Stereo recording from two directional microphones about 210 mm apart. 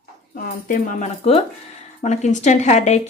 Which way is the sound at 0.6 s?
40° left (ahead or behind).